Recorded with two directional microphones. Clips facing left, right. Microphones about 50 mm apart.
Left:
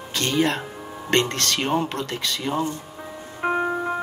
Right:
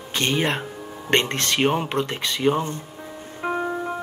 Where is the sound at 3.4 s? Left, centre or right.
Left.